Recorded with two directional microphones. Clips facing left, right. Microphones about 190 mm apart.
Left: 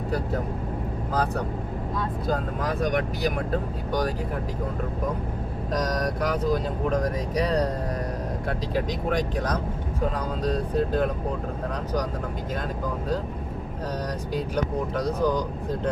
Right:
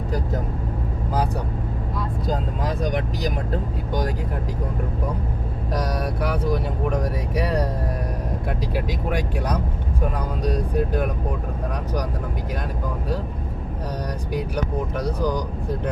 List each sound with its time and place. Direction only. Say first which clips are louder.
2.3 s speech: right 1 dB; 15° right (ahead or behind)
6.0 s speech: even; 10° right (ahead or behind)
14.3 s speech: right 1 dB; 15° right (ahead or behind)